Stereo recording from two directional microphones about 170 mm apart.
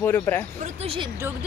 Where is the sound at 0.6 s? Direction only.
35° right (ahead or behind).